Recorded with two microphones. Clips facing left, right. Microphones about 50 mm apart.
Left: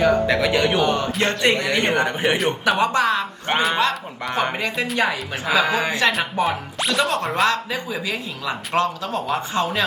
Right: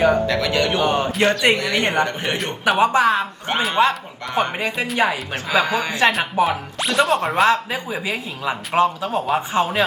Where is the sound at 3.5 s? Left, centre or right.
Centre.